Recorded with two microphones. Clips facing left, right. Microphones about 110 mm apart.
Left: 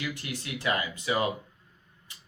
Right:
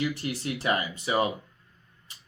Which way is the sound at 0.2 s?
30° right (ahead or behind).